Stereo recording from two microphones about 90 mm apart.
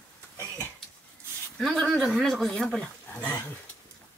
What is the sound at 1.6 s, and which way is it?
Speech, 10° left (ahead or behind).